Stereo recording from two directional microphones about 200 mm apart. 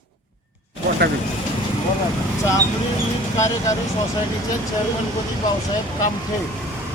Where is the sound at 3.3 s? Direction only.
15° left (ahead or behind).